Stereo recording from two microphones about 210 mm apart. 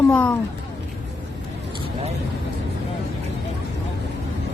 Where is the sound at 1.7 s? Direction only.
30° right (ahead or behind).